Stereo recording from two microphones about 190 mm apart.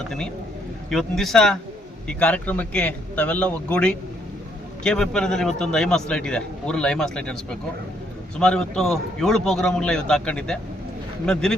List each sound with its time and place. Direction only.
0.9 s a man's voice: centre (ahead or behind)